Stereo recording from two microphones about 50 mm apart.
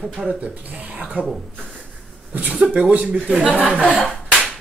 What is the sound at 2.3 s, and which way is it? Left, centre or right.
Speech, right.